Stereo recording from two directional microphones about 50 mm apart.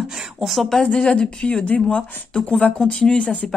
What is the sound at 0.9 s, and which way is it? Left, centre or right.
Speech, centre.